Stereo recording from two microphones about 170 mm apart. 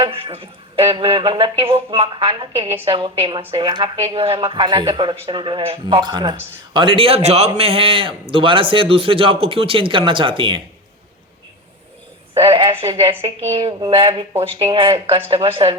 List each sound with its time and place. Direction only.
0.0 s a man's voice: 35° right (ahead or behind)
12.4 s a man's voice: 35° right (ahead or behind)